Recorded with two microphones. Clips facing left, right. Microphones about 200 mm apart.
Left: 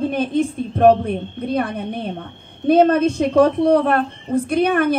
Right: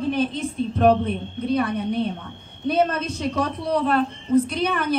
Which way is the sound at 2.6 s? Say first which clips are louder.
Left 8 dB; 55° left (ahead or behind).